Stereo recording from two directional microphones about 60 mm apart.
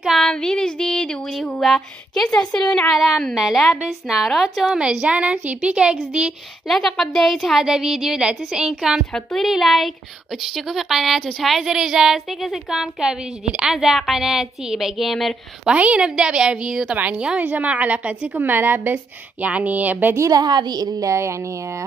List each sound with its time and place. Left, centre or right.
0.2 s a sound: centre
1.5 s a woman's voice: centre
2.9 s a woman's voice: centre
5.0 s a woman's voice: centre
6.7 s a woman's voice: centre
9.1 s a woman's voice: centre
15.6 s a woman's voice: centre
16.9 s a woman's voice: right
18.4 s a woman's voice: right
19.4 s a woman's voice: right
20.2 s a woman's voice: right